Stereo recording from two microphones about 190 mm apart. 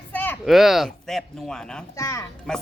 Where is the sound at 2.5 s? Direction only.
5° left (ahead or behind).